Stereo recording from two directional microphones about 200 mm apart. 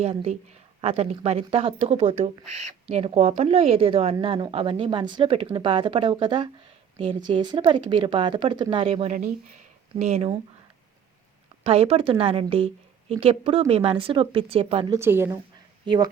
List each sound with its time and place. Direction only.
0.0 s a woman's voice: 30° right (ahead or behind)
11.6 s a woman's voice: 30° right (ahead or behind)
14.9 s a woman's voice: 10° right (ahead or behind)